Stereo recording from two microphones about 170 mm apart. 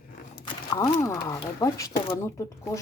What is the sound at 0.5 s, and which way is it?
Speech, 25° left (ahead or behind).